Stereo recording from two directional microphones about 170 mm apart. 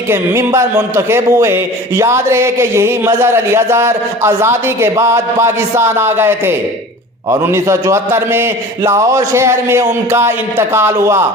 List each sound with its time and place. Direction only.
0.1 s speech: 15° right (ahead or behind)